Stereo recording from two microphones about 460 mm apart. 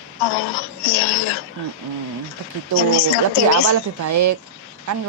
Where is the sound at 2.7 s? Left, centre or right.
Left.